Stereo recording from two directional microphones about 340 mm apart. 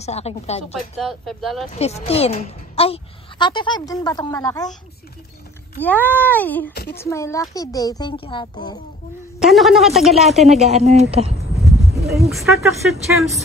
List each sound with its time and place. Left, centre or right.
0.0 s a woman's voice: centre
0.9 s speech: centre
1.8 s a woman's voice: centre
5.8 s speech: centre
6.7 s a woman's voice: left
7.0 s a woman's voice: centre
9.4 s speech: centre
10.6 s speech: centre
11.6 s a sound: centre
12.1 s speech: centre